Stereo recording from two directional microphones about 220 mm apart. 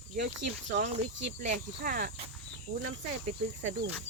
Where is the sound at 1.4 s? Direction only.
40° right (ahead or behind).